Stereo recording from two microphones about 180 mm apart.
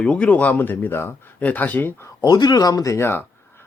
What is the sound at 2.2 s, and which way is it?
Speech, 25° left (ahead or behind).